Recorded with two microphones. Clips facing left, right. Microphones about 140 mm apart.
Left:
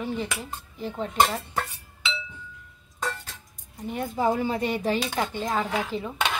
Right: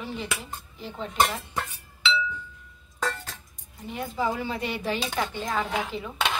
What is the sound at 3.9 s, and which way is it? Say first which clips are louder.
A woman's voice: left 3 dB; 45° left (ahead or behind).